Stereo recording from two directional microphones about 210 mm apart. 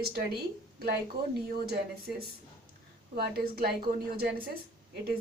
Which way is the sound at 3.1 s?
45° right (ahead or behind).